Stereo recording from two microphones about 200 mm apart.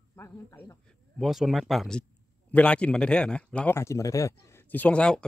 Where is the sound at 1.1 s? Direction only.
Centre (ahead or behind).